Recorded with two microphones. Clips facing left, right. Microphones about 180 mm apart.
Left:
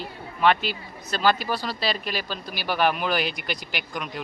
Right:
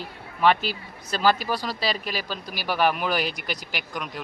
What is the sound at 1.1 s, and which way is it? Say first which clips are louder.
Speech: even; 10° right (ahead or behind).